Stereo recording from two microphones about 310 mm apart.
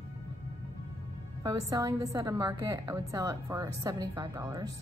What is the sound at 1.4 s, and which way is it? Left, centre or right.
A woman's voice, centre.